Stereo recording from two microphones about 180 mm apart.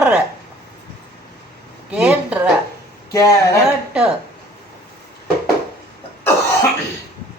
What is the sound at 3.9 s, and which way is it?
Speech, 5° right (ahead or behind).